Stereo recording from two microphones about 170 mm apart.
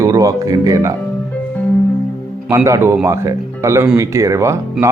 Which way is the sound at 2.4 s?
15° right (ahead or behind).